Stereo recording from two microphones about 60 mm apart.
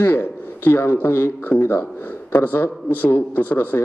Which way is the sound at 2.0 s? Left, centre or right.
Left.